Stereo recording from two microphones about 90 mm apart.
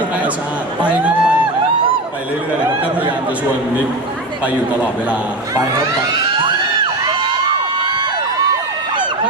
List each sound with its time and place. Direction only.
0.8 s speech: 15° right (ahead or behind)
6.3 s music: 60° right (ahead or behind)